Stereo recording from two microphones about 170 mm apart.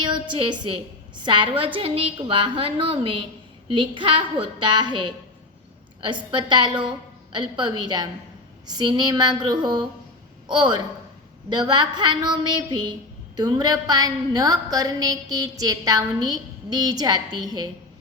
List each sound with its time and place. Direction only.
0.0 s a woman's voice: 30° right (ahead or behind)